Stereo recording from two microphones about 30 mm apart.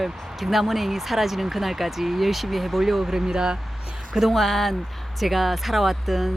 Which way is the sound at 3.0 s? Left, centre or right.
Centre.